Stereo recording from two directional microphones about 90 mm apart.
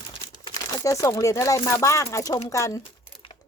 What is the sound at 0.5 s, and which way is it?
Crumpling, 40° left (ahead or behind).